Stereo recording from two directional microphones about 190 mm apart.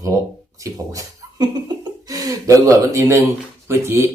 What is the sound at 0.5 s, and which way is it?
Speech, 15° right (ahead or behind).